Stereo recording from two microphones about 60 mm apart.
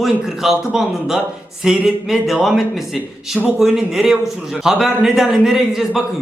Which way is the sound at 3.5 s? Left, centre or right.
Centre.